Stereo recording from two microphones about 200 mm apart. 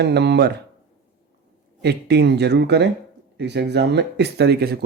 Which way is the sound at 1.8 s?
55° right (ahead or behind).